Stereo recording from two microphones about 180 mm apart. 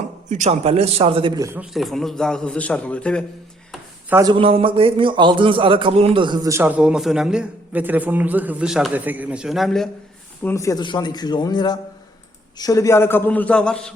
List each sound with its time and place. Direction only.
0.3 s a man's voice: 40° right (ahead or behind)
1.4 s a man's voice: 15° right (ahead or behind)
1.7 s a man's voice: centre (ahead or behind)
4.1 s a man's voice: 20° right (ahead or behind); by 9.9 s centre (ahead or behind)
10.4 s a man's voice: 15° left (ahead or behind)